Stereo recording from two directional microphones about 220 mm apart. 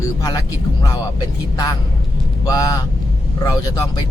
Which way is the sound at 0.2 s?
15° left (ahead or behind).